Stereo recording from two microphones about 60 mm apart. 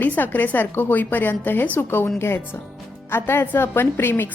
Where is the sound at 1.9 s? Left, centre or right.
Left.